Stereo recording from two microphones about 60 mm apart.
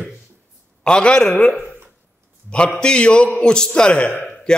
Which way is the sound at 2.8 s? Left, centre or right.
Centre.